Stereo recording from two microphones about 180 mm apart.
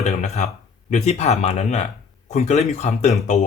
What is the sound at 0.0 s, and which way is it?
Speech, 40° left (ahead or behind).